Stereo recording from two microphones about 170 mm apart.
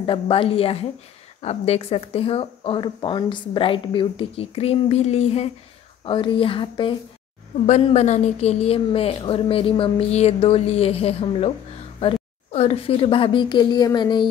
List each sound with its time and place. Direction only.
0.0 s speech: 30° left (ahead or behind)
7.6 s speech: 40° left (ahead or behind); by 14.2 s 25° left (ahead or behind)